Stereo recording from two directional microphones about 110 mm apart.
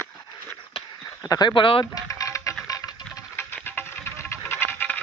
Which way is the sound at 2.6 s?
30° left (ahead or behind).